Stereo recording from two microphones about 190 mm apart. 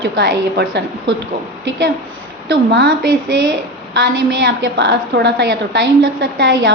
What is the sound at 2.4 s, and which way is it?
A woman's voice, 65° right (ahead or behind).